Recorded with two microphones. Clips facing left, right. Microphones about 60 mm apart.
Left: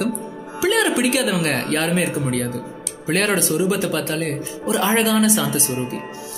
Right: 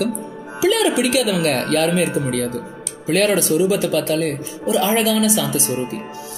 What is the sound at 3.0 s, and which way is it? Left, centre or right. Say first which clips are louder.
Speech: right 3 dB; left.